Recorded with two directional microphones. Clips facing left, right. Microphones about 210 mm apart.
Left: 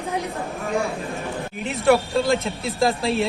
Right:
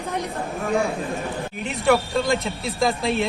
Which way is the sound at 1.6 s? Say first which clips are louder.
Left 2 dB; centre (ahead or behind).